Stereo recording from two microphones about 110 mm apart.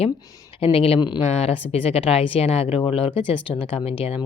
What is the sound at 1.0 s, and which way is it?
Speech, 40° left (ahead or behind).